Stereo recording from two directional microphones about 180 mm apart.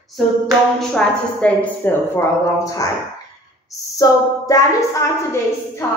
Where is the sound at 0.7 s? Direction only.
5° left (ahead or behind).